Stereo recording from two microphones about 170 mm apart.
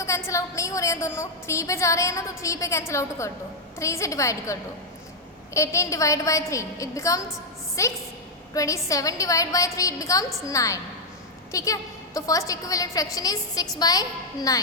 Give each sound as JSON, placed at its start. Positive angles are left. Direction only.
{"t": 0.0, "sound": "a woman's voice", "side_deg": 15}
{"t": 5.5, "sound": "a woman's voice", "side_deg": 15}